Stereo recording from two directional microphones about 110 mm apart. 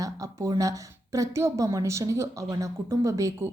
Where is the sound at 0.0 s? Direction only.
30° right (ahead or behind).